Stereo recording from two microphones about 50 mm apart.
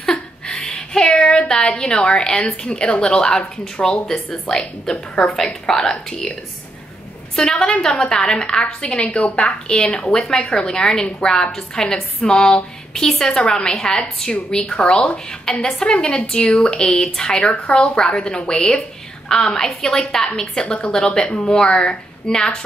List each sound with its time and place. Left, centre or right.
0.0 s a sound: centre
1.1 s child singing: centre
1.5 s a woman's voice: centre
7.3 s a woman's voice: centre